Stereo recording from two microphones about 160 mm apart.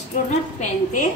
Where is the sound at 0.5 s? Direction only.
55° left (ahead or behind).